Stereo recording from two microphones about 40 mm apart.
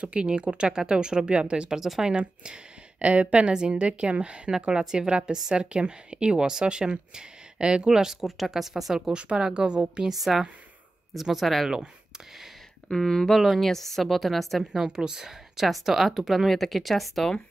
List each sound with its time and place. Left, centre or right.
0.1 s a woman's voice: right
1.7 s a woman's voice: centre
3.0 s a woman's voice: right; by 9.0 s centre
9.0 s a woman's voice: right
11.1 s speech: centre
12.9 s speech: centre
14.7 s speech: centre